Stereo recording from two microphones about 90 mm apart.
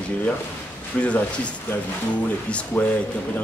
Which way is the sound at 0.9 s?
10° left (ahead or behind).